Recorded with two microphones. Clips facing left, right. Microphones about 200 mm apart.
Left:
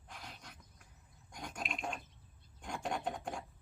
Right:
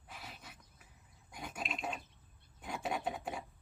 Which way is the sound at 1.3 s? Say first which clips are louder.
Right 1 dB; 5° right (ahead or behind).